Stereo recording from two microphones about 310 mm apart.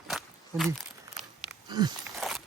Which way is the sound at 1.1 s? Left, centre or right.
Centre.